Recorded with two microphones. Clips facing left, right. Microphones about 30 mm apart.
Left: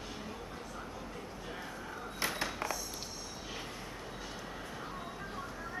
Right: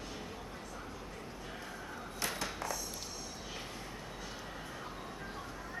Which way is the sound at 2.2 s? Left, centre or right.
Left.